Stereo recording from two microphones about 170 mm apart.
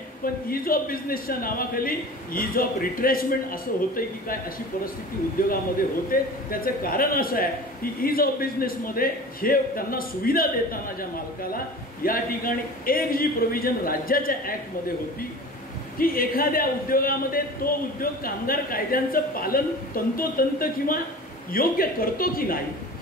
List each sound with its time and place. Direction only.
0.2 s a man's voice: 60° left (ahead or behind)
5.4 s a man's voice: 55° left (ahead or behind)
16.0 s a man's voice: 60° left (ahead or behind)